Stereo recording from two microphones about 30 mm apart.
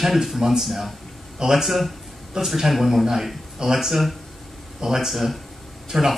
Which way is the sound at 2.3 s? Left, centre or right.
Centre.